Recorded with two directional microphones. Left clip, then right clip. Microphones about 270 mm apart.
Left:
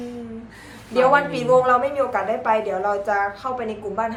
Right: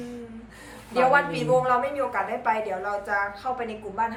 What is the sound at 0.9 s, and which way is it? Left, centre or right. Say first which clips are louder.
A woman's voice: left 4 dB; centre.